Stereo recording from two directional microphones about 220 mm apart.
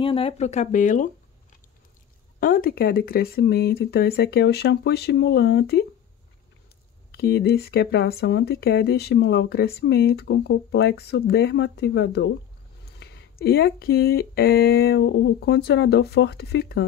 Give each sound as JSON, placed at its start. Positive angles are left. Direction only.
{"t": 0.0, "sound": "speech", "side_deg": 25}
{"t": 2.4, "sound": "speech", "side_deg": 40}
{"t": 7.1, "sound": "speech", "side_deg": 45}